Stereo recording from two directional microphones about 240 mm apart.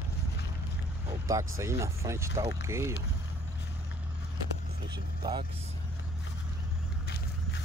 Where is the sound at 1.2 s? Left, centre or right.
Centre.